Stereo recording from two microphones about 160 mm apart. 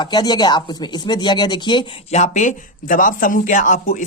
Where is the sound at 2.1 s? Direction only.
50° left (ahead or behind).